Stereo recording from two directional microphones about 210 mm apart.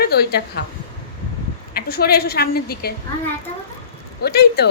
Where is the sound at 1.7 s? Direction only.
50° left (ahead or behind).